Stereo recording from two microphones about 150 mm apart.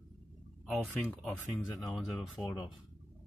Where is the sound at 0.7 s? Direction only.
5° left (ahead or behind).